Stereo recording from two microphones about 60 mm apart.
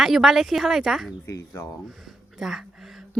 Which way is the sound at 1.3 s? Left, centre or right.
Left.